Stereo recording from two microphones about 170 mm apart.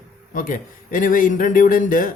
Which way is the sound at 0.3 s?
50° left (ahead or behind).